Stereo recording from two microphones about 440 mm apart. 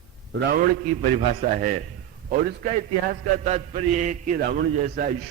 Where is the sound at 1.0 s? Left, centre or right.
Right.